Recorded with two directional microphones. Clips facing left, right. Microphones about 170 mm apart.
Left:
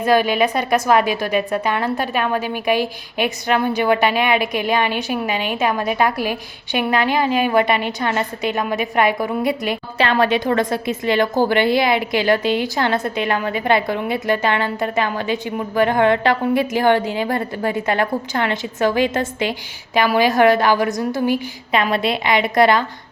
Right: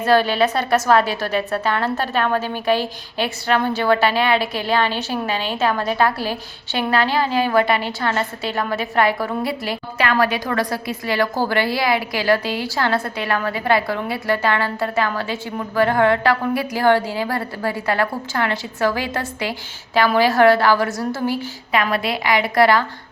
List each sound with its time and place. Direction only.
0.0 s a woman's voice: 15° left (ahead or behind)